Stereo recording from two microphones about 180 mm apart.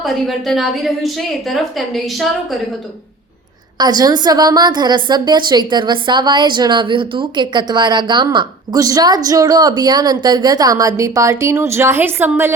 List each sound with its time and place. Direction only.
0.0 s a woman's voice: centre (ahead or behind)
3.8 s a woman's voice: 20° right (ahead or behind)